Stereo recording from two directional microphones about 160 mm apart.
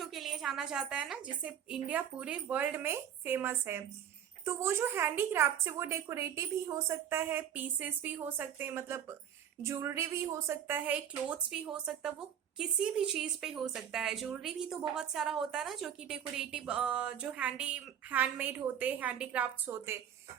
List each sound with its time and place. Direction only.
0.0 s a woman's voice: centre (ahead or behind)